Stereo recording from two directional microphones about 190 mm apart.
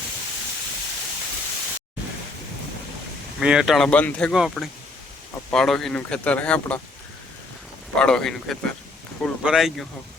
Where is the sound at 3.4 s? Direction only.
5° right (ahead or behind).